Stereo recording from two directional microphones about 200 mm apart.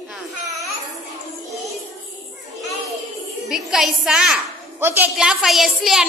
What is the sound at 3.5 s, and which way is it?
A woman's voice, 5° right (ahead or behind).